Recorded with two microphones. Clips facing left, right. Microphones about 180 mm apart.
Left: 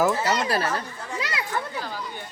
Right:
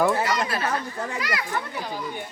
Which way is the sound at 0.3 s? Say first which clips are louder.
Left 2 dB; 30° left (ahead or behind).